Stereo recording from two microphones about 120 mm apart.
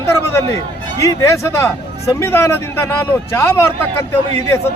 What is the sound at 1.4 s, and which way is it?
Speech, 25° left (ahead or behind).